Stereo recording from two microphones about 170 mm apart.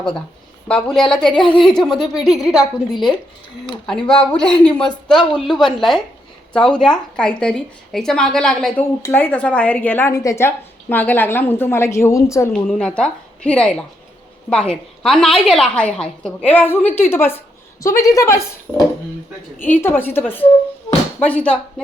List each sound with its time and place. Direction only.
0.7 s a woman's voice: centre (ahead or behind)
8.8 s a woman's voice: 15° left (ahead or behind)
12.5 s a woman's voice: 5° left (ahead or behind)
18.7 s a woman's voice: 5° right (ahead or behind)
19.5 s a woman's voice: 10° left (ahead or behind)